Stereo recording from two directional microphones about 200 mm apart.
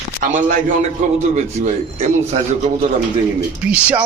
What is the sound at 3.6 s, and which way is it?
Speech, 5° right (ahead or behind).